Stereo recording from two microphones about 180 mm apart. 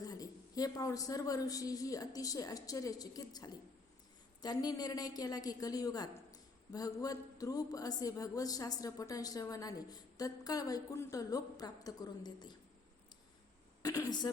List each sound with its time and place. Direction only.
0.0 s a woman's voice: 20° left (ahead or behind)
13.8 s a woman's voice: 20° left (ahead or behind)